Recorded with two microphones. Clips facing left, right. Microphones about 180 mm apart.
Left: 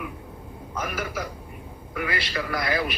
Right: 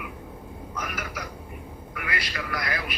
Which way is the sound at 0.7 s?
30° left (ahead or behind).